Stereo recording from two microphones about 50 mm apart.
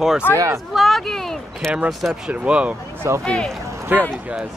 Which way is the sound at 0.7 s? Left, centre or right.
Centre.